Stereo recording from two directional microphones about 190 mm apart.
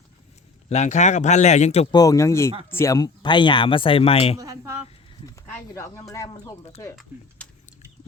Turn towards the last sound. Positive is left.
turn(degrees=5)  # may be behind; listen again after turning